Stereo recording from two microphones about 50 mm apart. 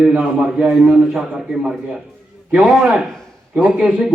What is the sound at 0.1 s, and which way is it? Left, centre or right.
A man's voice, centre.